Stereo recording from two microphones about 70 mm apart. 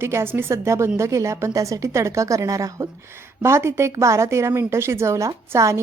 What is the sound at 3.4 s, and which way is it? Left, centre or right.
Speech, right.